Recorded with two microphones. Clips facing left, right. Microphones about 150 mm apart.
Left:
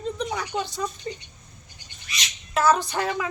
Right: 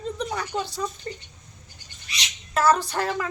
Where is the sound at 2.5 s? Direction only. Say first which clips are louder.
Even; centre (ahead or behind).